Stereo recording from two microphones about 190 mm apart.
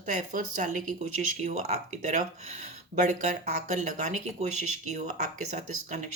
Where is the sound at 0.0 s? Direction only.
45° right (ahead or behind).